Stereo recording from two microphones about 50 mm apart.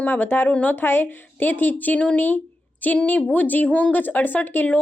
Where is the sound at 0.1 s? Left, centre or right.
Left.